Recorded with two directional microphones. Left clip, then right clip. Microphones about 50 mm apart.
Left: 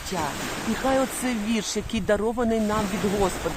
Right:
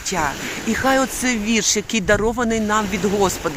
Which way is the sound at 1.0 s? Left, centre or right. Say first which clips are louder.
Right 6 dB; centre.